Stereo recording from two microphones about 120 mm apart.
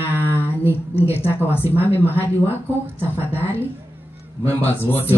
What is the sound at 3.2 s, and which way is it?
Speech, 15° left (ahead or behind).